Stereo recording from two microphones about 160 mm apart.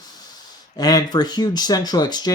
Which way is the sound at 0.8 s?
25° left (ahead or behind).